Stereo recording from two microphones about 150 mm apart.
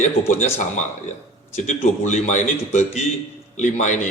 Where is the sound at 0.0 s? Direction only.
50° left (ahead or behind).